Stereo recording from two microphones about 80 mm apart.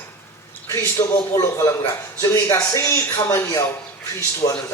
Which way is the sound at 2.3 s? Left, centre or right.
Left.